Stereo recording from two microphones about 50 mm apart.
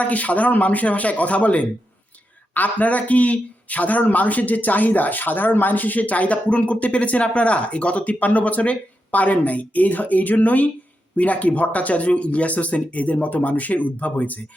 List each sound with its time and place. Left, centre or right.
0.0 s speech: left